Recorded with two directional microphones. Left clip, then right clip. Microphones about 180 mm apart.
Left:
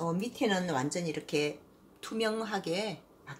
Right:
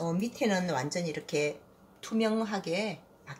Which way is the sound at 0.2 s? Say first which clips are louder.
Right 1 dB; 20° left (ahead or behind).